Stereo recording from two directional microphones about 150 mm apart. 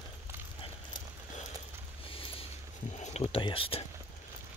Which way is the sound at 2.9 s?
50° left (ahead or behind).